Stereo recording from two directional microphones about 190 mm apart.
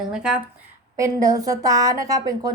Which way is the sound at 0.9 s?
15° right (ahead or behind).